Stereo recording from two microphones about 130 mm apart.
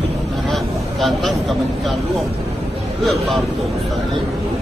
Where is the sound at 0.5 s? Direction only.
Centre (ahead or behind).